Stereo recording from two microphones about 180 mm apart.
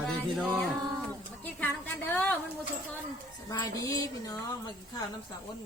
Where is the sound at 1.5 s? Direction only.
10° left (ahead or behind).